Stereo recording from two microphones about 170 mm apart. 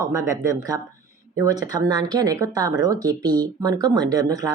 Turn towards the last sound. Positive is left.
turn(degrees=-20)  # may be behind; listen again after turning